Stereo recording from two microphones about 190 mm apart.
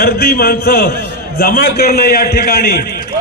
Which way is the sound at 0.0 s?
55° left (ahead or behind).